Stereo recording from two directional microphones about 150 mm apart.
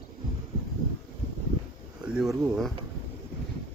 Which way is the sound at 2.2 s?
Centre (ahead or behind).